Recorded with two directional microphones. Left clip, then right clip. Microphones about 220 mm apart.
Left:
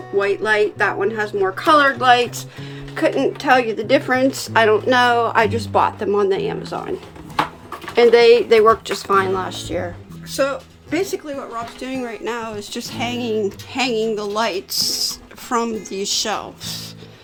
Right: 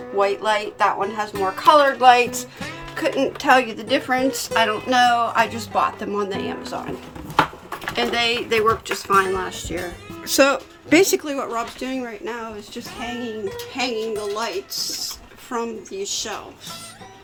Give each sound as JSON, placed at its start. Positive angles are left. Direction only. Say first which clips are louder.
{"t": 0.2, "sound": "speech", "louder": "left 3 dB", "side_deg": 5}
{"t": 7.9, "sound": "speech", "louder": "left 11 dB", "side_deg": 20}
{"t": 10.2, "sound": "speech", "louder": "right 4 dB", "side_deg": -45}
{"t": 12.2, "sound": "speech", "louder": "left 5 dB", "side_deg": 35}